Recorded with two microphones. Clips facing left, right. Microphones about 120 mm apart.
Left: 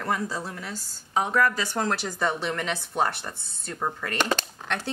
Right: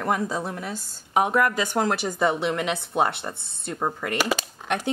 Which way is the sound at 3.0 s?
20° right (ahead or behind).